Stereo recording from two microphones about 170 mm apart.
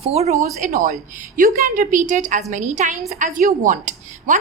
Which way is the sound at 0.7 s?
55° right (ahead or behind).